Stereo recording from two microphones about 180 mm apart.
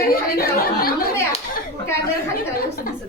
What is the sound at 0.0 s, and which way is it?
Chatter, 55° left (ahead or behind).